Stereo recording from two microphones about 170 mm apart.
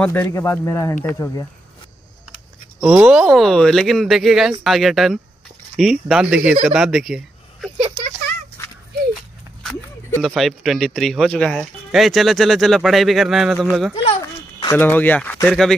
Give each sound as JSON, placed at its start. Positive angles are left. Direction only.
{"t": 0.0, "sound": "speech", "side_deg": 10}
{"t": 2.8, "sound": "speech", "side_deg": -10}
{"t": 8.6, "sound": "a sound", "side_deg": 15}
{"t": 9.6, "sound": "speech", "side_deg": 5}
{"t": 14.2, "sound": "speech", "side_deg": 20}